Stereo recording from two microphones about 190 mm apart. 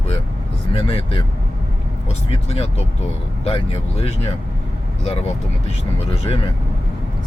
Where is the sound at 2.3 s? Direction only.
30° left (ahead or behind).